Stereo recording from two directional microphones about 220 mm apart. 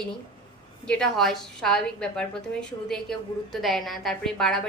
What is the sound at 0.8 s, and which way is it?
A woman's voice, 5° left (ahead or behind).